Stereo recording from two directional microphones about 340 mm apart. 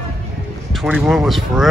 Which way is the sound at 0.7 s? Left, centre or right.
Centre.